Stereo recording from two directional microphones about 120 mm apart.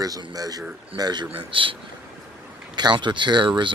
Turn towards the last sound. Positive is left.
turn(degrees=-40)  # may be behind; listen again after turning